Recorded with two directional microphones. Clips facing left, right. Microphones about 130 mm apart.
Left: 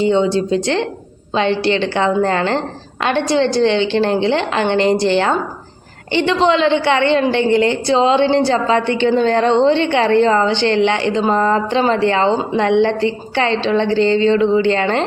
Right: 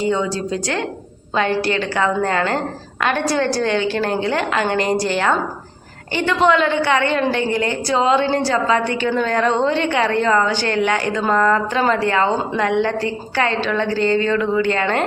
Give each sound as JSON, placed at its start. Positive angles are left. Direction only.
{"t": 0.0, "sound": "a woman's voice", "side_deg": 25}